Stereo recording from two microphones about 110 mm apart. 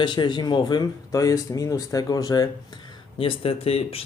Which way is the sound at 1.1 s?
30° left (ahead or behind).